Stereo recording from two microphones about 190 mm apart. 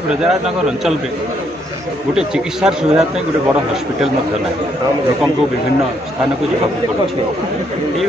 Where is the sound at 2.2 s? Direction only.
5° right (ahead or behind).